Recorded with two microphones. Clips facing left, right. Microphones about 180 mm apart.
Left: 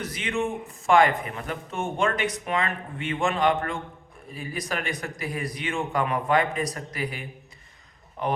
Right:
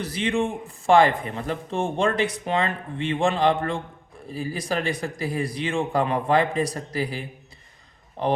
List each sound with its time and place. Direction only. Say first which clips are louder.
0.0 s speech: right 4 dB; 30° right (ahead or behind)